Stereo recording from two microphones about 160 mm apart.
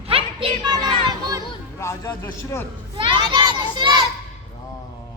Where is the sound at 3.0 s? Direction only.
35° right (ahead or behind).